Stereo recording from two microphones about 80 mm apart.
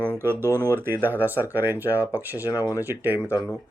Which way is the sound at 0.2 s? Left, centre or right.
Right.